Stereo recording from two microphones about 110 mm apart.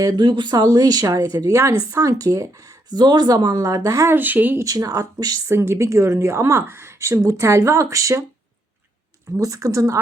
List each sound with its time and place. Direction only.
0.0 s speech: 40° right (ahead or behind); by 4.6 s 15° right (ahead or behind)
4.6 s speech: 35° right (ahead or behind)
5.5 s speech: 25° right (ahead or behind)
9.3 s speech: 30° right (ahead or behind)